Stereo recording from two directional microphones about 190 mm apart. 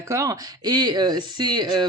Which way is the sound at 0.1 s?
15° right (ahead or behind).